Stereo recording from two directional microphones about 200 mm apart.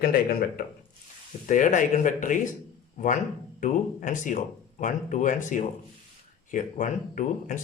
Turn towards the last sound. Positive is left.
turn(degrees=40)  # may be behind; listen again after turning